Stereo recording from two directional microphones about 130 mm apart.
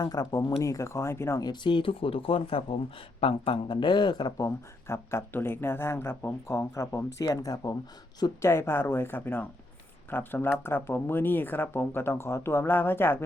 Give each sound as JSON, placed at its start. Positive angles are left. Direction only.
{"t": 0.0, "sound": "speech", "side_deg": 30}
{"t": 4.4, "sound": "speech", "side_deg": 25}